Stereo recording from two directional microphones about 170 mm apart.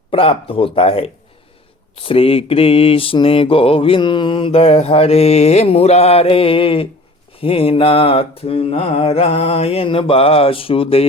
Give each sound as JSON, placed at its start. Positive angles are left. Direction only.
{"t": 0.1, "sound": "mantra", "side_deg": 35}